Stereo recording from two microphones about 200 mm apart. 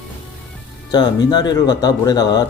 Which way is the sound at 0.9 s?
20° left (ahead or behind).